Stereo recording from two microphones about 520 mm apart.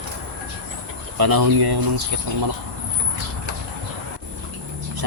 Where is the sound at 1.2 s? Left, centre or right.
Right.